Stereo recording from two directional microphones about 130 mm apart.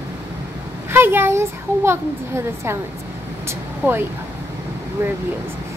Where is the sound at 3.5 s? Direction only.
15° right (ahead or behind).